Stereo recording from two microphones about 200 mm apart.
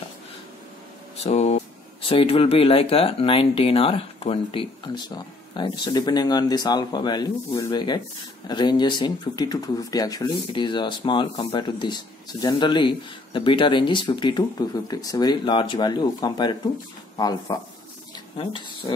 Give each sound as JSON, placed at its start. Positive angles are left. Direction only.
{"t": 1.2, "sound": "speech", "side_deg": 30}